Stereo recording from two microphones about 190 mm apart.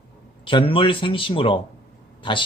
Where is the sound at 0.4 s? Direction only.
30° left (ahead or behind).